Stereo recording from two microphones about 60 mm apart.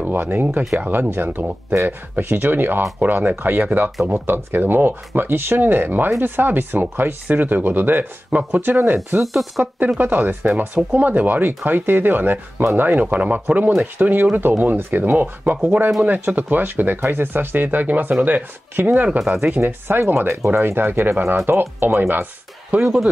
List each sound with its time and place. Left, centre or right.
0.1 s speech: right
8.3 s speech: right
8.6 s speech: right
9.2 s speech: centre
9.9 s speech: right
19.0 s speech: centre
19.6 s speech: right